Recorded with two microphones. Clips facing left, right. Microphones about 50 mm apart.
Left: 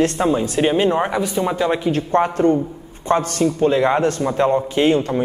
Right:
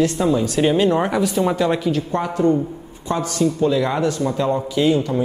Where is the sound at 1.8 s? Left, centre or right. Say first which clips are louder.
Left 4 dB; left.